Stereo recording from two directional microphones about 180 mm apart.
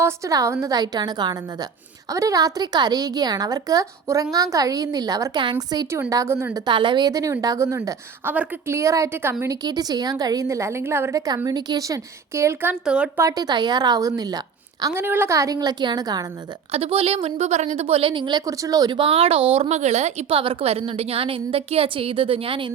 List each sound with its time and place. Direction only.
0.0 s a woman's voice: 20° right (ahead or behind)
6.7 s a woman's voice: 25° right (ahead or behind); by 13.2 s 5° right (ahead or behind)
13.2 s a woman's voice: 20° right (ahead or behind)
16.7 s a woman's voice: 30° right (ahead or behind)